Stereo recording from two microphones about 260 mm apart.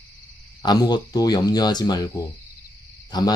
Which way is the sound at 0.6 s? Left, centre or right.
Centre.